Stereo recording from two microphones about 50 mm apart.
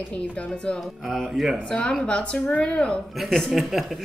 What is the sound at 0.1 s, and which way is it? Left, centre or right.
Speech, left.